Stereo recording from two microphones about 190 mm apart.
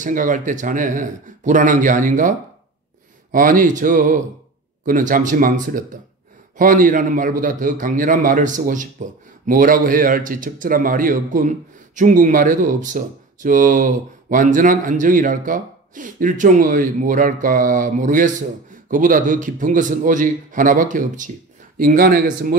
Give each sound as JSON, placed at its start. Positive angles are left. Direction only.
{"t": 0.0, "sound": "a man's voice", "side_deg": -45}